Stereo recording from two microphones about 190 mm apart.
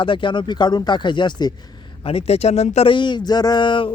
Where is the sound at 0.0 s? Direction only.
25° left (ahead or behind).